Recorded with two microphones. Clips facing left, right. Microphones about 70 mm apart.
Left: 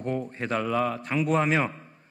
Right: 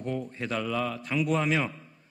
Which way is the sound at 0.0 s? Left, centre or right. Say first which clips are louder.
Left 3 dB; left.